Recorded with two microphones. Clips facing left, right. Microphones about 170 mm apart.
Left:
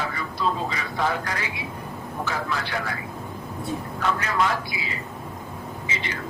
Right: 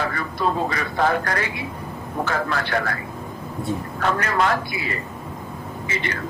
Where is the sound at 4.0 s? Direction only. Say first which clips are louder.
Right 3 dB; 60° right (ahead or behind).